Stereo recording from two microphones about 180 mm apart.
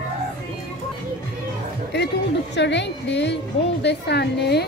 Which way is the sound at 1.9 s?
70° left (ahead or behind).